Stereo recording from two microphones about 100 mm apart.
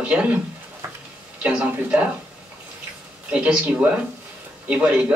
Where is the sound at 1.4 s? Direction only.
10° right (ahead or behind).